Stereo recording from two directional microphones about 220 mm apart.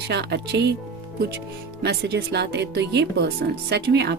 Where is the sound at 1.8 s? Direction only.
50° right (ahead or behind).